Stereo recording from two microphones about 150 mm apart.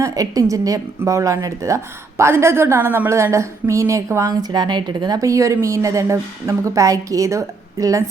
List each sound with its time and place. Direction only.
0.0 s a woman's voice: 25° right (ahead or behind)